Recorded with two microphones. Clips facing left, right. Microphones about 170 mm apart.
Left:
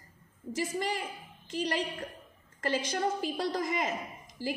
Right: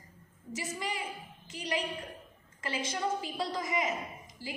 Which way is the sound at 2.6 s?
50° left (ahead or behind).